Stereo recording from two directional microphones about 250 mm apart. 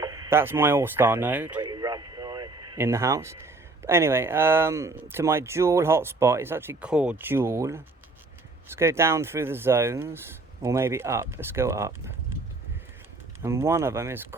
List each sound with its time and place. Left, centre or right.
0.0 s speech: centre
13.4 s speech: centre